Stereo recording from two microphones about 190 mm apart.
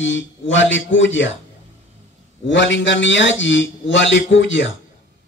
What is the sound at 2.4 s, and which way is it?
Speech, 75° left (ahead or behind).